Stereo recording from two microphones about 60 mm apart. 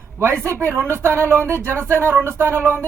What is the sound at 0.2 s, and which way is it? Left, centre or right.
Speech, right.